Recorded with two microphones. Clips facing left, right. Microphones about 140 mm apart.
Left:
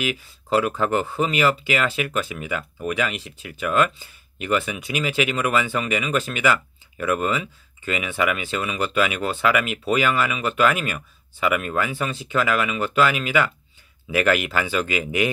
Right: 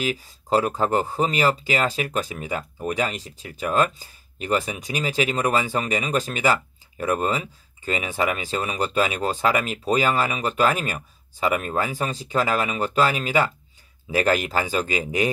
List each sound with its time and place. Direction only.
0.0 s speech: 35° right (ahead or behind)